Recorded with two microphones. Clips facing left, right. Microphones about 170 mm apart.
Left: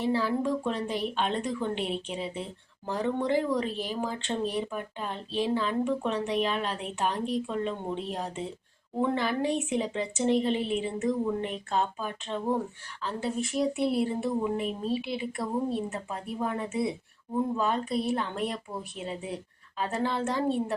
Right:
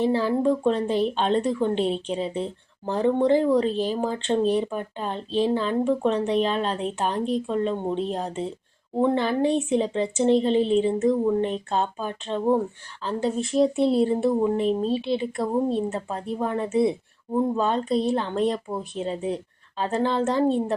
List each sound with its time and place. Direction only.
0.0 s a woman's voice: 25° right (ahead or behind)